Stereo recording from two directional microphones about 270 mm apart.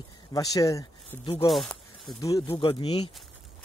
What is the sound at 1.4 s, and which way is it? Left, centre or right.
Speech, centre.